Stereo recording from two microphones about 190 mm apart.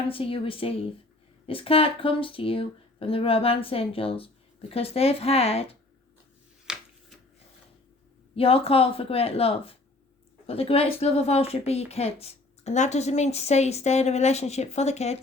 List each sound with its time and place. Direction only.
0.1 s a woman's voice: 30° left (ahead or behind)
6.7 s a sound: 5° right (ahead or behind)
8.4 s a woman's voice: 30° left (ahead or behind)